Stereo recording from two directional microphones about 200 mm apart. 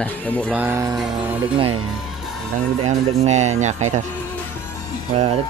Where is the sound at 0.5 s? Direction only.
10° right (ahead or behind).